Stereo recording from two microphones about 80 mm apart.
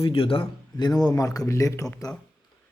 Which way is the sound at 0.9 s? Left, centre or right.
Left.